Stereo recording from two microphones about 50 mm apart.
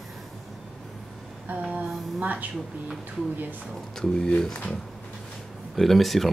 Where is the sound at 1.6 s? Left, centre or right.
Right.